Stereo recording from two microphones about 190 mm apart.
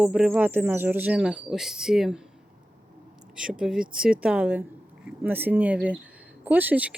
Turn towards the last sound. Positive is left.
turn(degrees=-10)  # may be behind; listen again after turning